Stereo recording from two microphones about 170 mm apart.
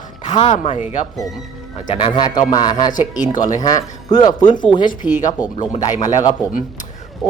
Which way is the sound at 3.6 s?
20° left (ahead or behind).